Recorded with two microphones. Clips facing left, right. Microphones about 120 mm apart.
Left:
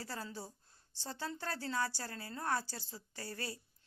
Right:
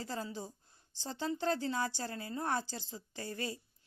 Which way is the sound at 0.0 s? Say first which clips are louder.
Right 4 dB; 20° right (ahead or behind).